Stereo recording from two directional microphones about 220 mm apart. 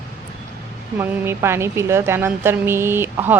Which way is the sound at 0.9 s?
10° right (ahead or behind).